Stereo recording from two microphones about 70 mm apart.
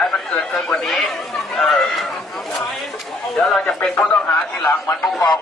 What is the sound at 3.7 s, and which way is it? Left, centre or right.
Speech, centre.